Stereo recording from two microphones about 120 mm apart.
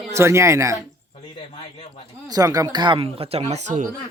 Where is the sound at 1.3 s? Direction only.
45° left (ahead or behind).